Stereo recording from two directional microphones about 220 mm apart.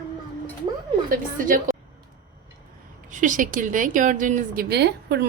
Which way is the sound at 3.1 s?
35° right (ahead or behind).